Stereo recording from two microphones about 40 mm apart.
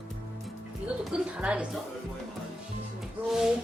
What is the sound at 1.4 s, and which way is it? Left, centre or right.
Speech, right.